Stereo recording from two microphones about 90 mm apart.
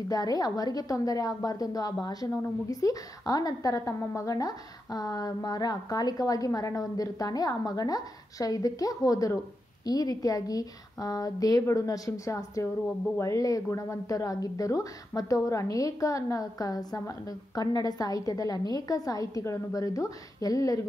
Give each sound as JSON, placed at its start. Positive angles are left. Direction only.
{"t": 0.1, "sound": "a woman's voice", "side_deg": 45}